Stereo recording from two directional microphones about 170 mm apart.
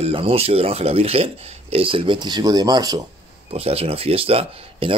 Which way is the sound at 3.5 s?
35° right (ahead or behind).